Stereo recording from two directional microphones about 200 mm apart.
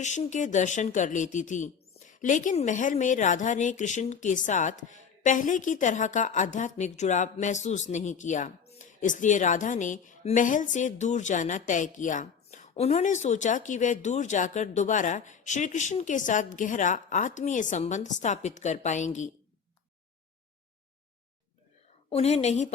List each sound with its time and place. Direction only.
0.0 s a woman's voice: 35° left (ahead or behind)
22.1 s a woman's voice: 30° left (ahead or behind)